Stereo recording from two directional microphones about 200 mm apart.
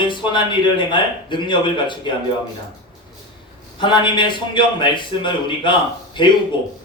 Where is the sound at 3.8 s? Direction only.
25° left (ahead or behind).